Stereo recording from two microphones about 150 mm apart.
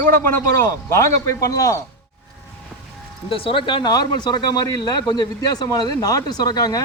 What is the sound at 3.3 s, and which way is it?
Speech, 35° left (ahead or behind).